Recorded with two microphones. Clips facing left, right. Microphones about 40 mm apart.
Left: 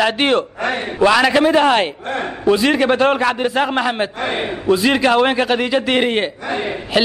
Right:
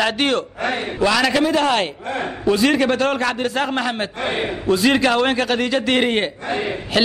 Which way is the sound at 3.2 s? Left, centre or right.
Centre.